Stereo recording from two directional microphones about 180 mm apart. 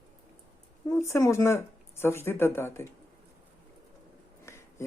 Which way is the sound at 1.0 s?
15° left (ahead or behind).